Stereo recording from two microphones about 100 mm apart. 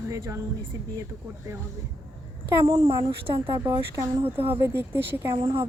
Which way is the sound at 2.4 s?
30° right (ahead or behind).